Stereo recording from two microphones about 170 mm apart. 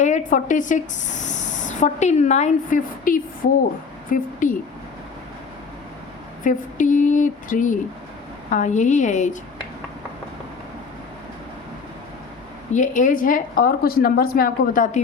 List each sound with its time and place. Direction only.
0.0 s speech: 45° left (ahead or behind)
6.4 s speech: 50° left (ahead or behind)
12.7 s a woman's voice: 50° left (ahead or behind)